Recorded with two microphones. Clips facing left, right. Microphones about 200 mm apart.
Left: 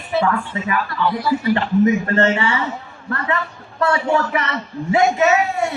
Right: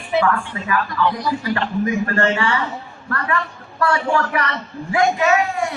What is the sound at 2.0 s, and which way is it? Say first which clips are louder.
A man's voice: left 2 dB; 25° left (ahead or behind).